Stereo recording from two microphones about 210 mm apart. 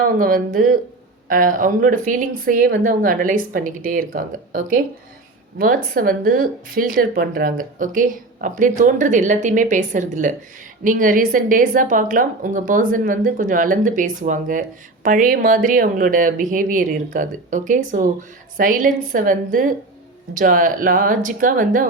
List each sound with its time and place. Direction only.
0.2 s a woman's voice: 40° right (ahead or behind)